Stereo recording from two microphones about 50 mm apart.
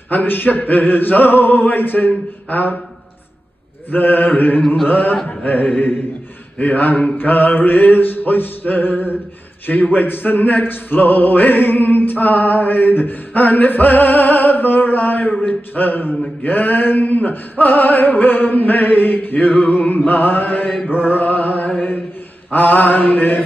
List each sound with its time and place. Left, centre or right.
0.1 s speech: left
3.9 s speech: left